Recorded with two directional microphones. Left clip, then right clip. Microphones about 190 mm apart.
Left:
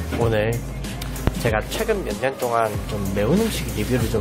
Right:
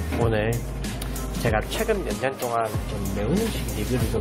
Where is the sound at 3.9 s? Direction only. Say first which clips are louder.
Left 4 dB; 15° left (ahead or behind).